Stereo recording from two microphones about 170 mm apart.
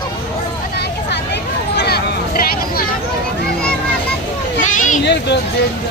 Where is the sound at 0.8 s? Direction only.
90° left; by 2.8 s 60° left (ahead or behind).